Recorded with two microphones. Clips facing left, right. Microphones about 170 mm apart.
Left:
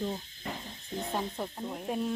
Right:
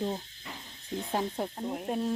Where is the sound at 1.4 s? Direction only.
15° right (ahead or behind).